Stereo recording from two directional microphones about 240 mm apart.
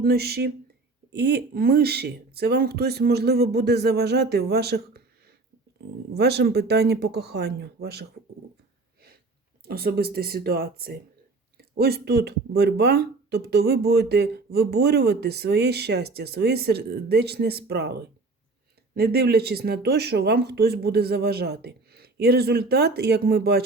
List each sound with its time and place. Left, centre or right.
0.0 s speech: right
6.1 s speech: right
9.6 s speech: right